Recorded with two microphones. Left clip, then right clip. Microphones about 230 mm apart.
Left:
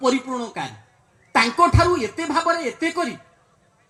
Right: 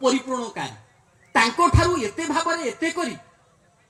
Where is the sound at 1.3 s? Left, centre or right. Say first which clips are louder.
Left 2 dB; left.